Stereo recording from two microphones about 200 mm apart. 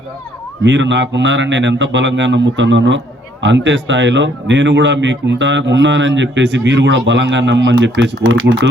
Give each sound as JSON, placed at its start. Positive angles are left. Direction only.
{"t": 0.6, "sound": "speech", "side_deg": -65}